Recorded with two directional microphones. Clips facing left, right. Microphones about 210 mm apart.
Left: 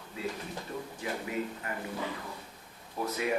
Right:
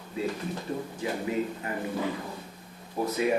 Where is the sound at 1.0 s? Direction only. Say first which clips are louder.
Right 5 dB; 25° right (ahead or behind).